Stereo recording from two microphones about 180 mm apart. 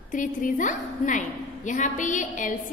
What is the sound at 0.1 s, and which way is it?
A woman's voice, 45° left (ahead or behind).